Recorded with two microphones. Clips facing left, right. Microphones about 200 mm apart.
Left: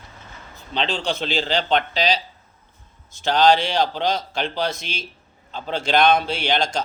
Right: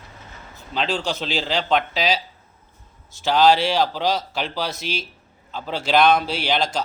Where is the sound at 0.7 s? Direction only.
5° right (ahead or behind).